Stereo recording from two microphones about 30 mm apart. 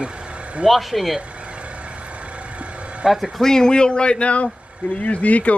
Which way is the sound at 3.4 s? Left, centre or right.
Centre.